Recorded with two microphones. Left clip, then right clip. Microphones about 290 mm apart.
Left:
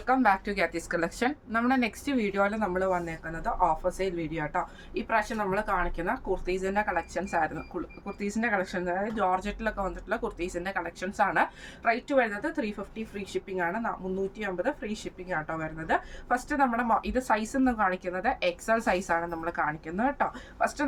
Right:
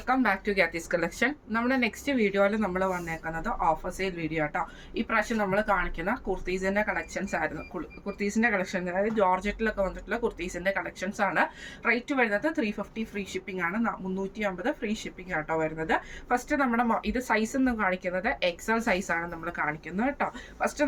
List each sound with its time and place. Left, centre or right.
0.0 s speech: centre
14.3 s speech: centre